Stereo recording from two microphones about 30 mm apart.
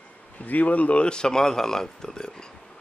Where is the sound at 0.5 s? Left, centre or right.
Left.